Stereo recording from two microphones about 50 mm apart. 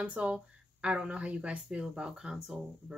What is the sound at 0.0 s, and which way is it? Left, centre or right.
Speech, right.